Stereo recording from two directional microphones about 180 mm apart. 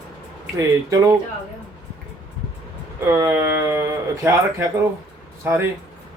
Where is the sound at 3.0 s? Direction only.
15° right (ahead or behind).